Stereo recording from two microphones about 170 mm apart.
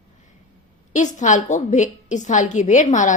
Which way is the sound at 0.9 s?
45° left (ahead or behind).